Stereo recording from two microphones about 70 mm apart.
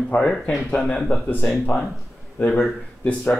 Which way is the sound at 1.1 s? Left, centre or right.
Left.